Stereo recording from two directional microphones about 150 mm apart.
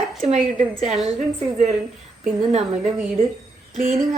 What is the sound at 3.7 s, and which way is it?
Speech, 50° right (ahead or behind).